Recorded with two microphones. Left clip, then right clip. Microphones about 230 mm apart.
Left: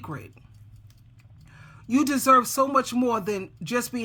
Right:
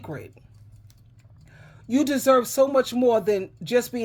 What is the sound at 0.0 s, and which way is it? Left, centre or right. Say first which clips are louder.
Speech: right 1 dB; centre.